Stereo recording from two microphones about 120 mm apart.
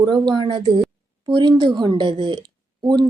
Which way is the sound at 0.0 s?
40° right (ahead or behind).